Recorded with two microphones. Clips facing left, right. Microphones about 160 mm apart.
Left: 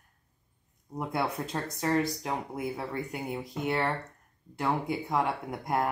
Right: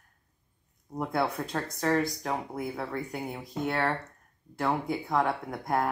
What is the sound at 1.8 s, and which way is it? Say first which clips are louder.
Speech: right 1 dB; 15° left (ahead or behind).